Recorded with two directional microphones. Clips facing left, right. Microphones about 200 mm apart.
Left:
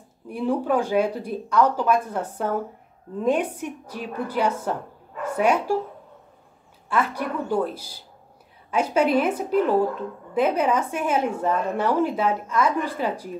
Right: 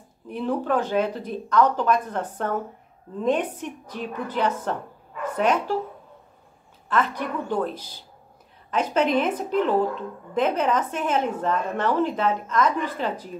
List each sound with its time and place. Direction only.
0.3 s a woman's voice: 10° left (ahead or behind)
6.9 s a woman's voice: 10° left (ahead or behind)